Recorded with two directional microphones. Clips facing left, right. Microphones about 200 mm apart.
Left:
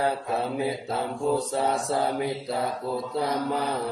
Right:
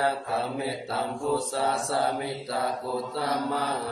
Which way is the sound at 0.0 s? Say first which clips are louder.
Left 1 dB; 20° left (ahead or behind).